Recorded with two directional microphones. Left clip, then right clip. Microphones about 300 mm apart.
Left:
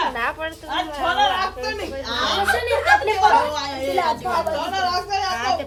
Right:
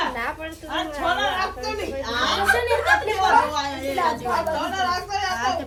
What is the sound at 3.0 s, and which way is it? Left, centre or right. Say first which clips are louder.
Speech: left 2 dB; centre.